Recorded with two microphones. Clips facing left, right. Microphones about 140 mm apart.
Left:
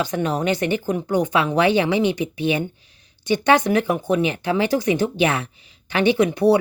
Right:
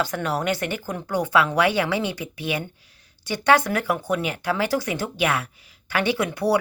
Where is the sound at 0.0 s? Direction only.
20° left (ahead or behind).